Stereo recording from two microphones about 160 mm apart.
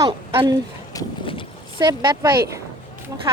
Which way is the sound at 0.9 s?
30° left (ahead or behind).